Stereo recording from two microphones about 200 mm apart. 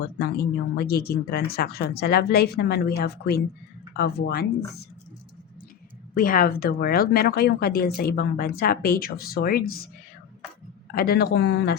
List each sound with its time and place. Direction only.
0.0 s speech: 55° left (ahead or behind)
6.1 s speech: 45° left (ahead or behind)
10.9 s speech: 50° left (ahead or behind)